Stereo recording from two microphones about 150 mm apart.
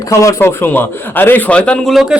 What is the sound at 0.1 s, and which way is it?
A man's voice, 20° left (ahead or behind).